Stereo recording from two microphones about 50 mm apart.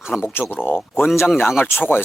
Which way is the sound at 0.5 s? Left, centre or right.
Left.